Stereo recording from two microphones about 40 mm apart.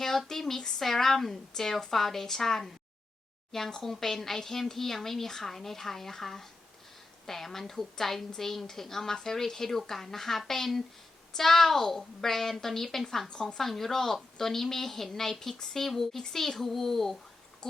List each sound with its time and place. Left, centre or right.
0.3 s a woman's voice: centre
13.2 s speech: centre
15.8 s a child's voice: centre
17.6 s a sound: centre